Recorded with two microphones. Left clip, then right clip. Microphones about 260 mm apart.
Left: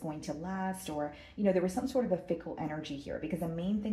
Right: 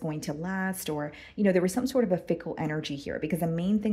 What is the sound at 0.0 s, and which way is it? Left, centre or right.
A woman's voice, right.